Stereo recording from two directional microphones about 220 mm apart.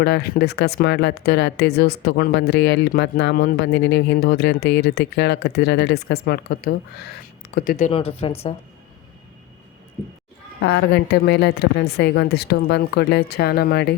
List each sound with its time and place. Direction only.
0.0 s speech: 50° left (ahead or behind); by 8.5 s 25° left (ahead or behind)
10.6 s speech: 50° left (ahead or behind)